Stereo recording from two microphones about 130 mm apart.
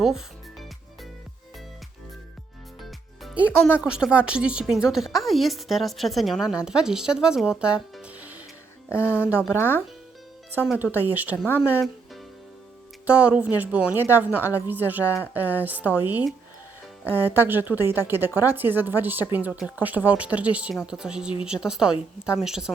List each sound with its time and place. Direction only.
3.3 s speech: 10° right (ahead or behind)
8.9 s speech: 20° left (ahead or behind)
10.8 s a woman's voice: 15° right (ahead or behind)
13.1 s a woman's voice: 10° right (ahead or behind)
15.0 s speech: 15° left (ahead or behind)
15.3 s a woman's voice: 15° right (ahead or behind)
17.2 s a woman's voice: 15° right (ahead or behind)